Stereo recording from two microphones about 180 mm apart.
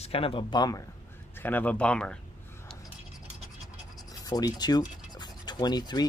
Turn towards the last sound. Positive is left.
turn(degrees=25)  # may be behind; listen again after turning